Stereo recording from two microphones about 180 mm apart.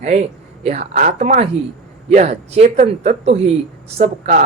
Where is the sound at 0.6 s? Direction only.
40° right (ahead or behind).